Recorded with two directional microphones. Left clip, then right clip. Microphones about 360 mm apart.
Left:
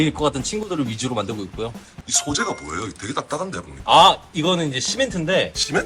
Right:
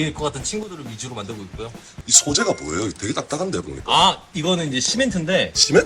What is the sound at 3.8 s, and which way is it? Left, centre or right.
A man's voice, left.